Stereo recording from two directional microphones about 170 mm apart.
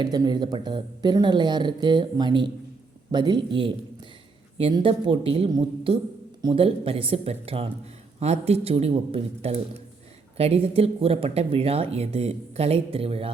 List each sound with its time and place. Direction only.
0.0 s speech: 25° right (ahead or behind)